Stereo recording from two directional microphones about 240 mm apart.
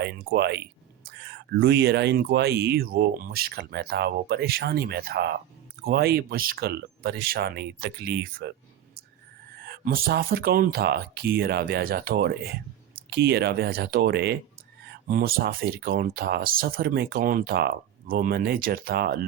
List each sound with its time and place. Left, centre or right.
0.0 s speech: right
9.6 s speech: right